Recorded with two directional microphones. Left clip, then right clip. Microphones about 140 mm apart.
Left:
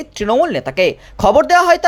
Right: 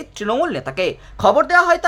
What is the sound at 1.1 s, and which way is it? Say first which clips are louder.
Speech: left 2 dB; 30° left (ahead or behind).